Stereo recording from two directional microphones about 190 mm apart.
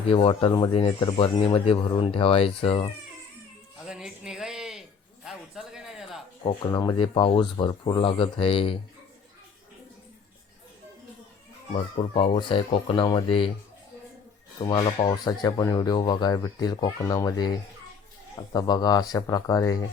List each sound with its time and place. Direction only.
0.1 s speech: 30° left (ahead or behind)
3.8 s a sound: 5° right (ahead or behind)
6.4 s speech: 20° left (ahead or behind)
11.7 s speech: 30° left (ahead or behind)
14.7 s speech: 25° left (ahead or behind)
18.5 s speech: 20° left (ahead or behind)